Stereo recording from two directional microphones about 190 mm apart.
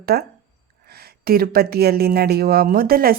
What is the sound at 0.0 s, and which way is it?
A woman's voice, 55° right (ahead or behind).